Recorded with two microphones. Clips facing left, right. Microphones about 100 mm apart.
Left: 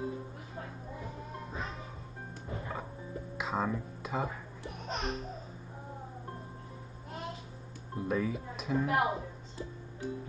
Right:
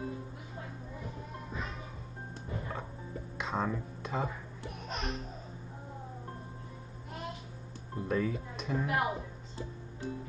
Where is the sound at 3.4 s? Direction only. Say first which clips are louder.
Even; 5° left (ahead or behind).